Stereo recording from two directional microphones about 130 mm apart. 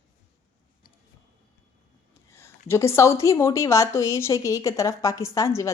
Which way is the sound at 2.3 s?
20° left (ahead or behind).